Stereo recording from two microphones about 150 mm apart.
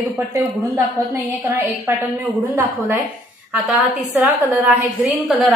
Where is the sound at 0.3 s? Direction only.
20° right (ahead or behind).